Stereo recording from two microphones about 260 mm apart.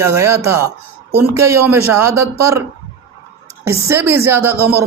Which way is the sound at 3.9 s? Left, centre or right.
Centre.